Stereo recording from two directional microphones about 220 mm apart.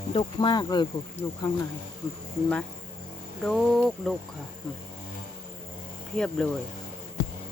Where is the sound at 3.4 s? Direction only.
Centre (ahead or behind).